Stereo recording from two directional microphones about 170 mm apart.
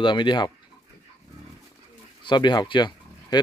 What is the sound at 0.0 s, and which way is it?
Speech, 30° left (ahead or behind).